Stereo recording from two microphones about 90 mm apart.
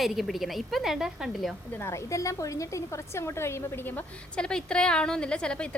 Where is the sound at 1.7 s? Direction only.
30° left (ahead or behind).